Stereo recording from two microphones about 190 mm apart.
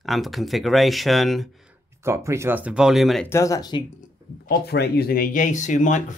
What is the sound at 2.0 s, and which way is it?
Speech, 15° right (ahead or behind).